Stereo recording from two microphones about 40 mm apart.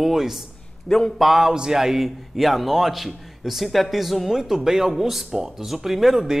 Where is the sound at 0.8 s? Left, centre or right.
Centre.